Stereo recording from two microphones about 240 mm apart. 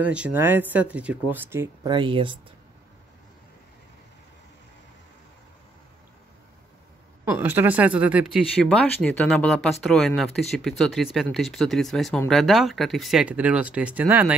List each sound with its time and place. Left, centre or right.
0.0 s speech: centre; by 2.3 s right
7.2 s speech: centre